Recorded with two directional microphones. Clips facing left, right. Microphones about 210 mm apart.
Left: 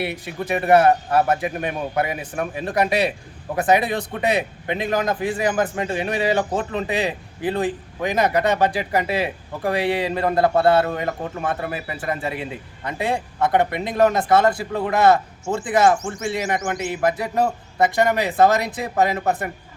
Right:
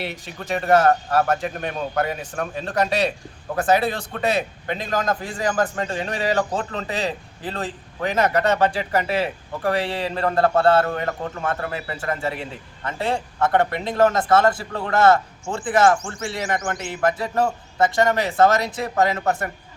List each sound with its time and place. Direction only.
0.0 s a man's voice: 15° left (ahead or behind)